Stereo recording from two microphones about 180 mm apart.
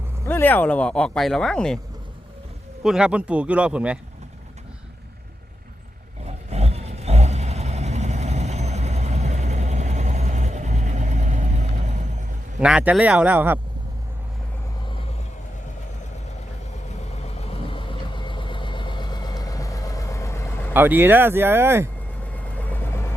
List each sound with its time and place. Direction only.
0.3 s speech: 10° left (ahead or behind)
2.8 s speech: 5° right (ahead or behind)
6.2 s vehicle: 35° right (ahead or behind)
12.5 s speech: 5° right (ahead or behind)
17.2 s vehicle: 35° left (ahead or behind); by 20.7 s 15° left (ahead or behind)
20.7 s speech: 10° right (ahead or behind)
22.3 s vehicle: 10° left (ahead or behind)